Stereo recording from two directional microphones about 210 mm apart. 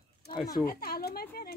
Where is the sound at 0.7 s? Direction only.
45° left (ahead or behind).